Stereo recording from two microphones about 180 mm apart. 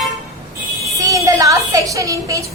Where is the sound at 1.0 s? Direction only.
15° right (ahead or behind).